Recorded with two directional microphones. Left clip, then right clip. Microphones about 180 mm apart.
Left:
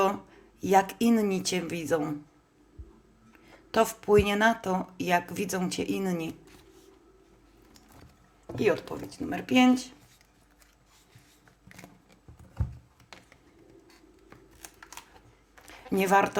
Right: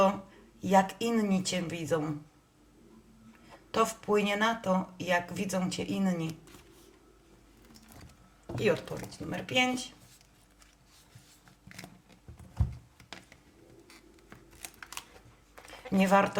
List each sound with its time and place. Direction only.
0.6 s speech: 45° left (ahead or behind)
3.7 s speech: 45° left (ahead or behind)
8.6 s speech: 40° left (ahead or behind)
16.0 s speech: 40° left (ahead or behind)